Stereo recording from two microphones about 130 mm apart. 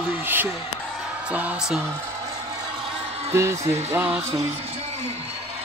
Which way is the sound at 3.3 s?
20° right (ahead or behind).